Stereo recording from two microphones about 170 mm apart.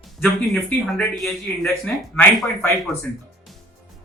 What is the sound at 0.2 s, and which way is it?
A man's voice, 5° left (ahead or behind).